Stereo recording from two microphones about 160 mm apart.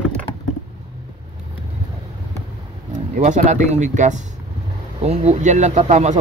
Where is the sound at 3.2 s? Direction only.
50° right (ahead or behind).